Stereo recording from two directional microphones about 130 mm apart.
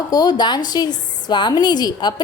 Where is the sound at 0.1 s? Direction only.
30° left (ahead or behind).